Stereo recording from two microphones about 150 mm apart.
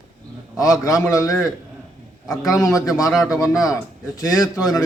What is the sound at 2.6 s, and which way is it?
Speech, 25° left (ahead or behind).